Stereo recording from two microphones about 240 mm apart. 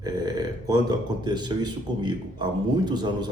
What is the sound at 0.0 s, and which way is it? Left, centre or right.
Speech, centre.